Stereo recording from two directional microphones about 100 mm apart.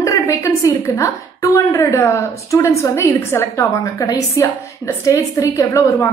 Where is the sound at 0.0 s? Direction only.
30° left (ahead or behind).